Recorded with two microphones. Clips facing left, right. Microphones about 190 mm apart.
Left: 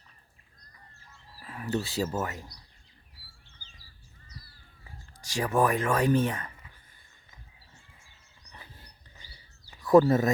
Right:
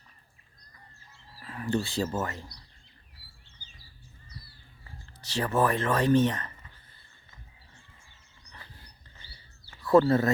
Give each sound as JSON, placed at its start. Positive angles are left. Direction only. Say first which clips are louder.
{"t": 1.4, "sound": "speech", "louder": "right 2 dB", "side_deg": 5}
{"t": 4.3, "sound": "crow", "louder": "right 1 dB", "side_deg": -30}
{"t": 5.2, "sound": "speech", "louder": "left 1 dB", "side_deg": 10}
{"t": 9.7, "sound": "a sound", "louder": "left 2 dB", "side_deg": 15}
{"t": 10.1, "sound": "speech", "louder": "even", "side_deg": 15}